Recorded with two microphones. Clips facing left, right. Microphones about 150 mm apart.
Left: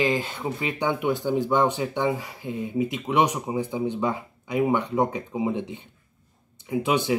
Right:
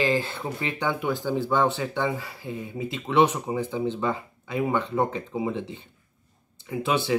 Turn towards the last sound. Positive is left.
turn(degrees=15)  # may be behind; listen again after turning